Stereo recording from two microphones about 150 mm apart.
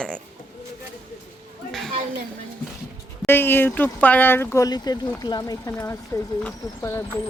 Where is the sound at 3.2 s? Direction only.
15° left (ahead or behind).